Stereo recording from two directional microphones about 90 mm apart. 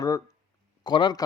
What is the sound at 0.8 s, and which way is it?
Speech, 55° left (ahead or behind).